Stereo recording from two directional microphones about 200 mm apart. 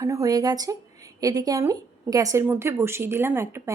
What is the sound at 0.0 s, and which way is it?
Speech, 15° right (ahead or behind).